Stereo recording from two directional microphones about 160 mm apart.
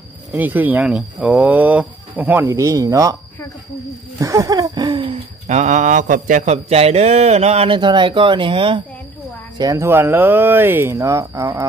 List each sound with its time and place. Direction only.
0.3 s speech: 10° right (ahead or behind)
4.2 s a sound: 20° right (ahead or behind)
5.5 s speech: 50° right (ahead or behind); by 8.8 s 30° right (ahead or behind)
9.6 s speech: 20° right (ahead or behind)